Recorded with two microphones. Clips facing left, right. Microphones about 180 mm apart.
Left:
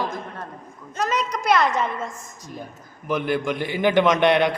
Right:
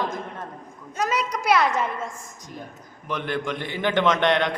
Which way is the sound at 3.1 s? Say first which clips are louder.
Left 4 dB; 10° left (ahead or behind).